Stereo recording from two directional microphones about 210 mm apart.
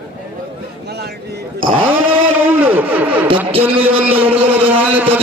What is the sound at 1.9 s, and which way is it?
Vehicle, 10° right (ahead or behind).